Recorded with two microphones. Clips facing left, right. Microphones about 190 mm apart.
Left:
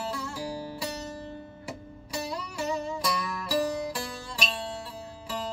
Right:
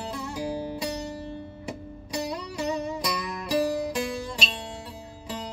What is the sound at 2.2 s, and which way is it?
Music, 20° right (ahead or behind).